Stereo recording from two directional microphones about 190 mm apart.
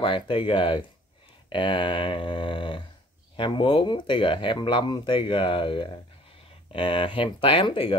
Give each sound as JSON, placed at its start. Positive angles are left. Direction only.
{"t": 0.0, "sound": "speech", "side_deg": 25}